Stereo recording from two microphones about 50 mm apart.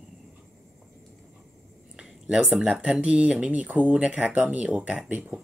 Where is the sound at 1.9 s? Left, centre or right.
Centre.